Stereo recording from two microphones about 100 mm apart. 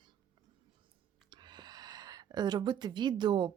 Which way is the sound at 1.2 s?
45° right (ahead or behind).